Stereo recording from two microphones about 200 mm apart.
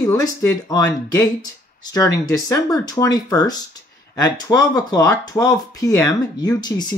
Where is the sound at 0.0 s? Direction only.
15° left (ahead or behind).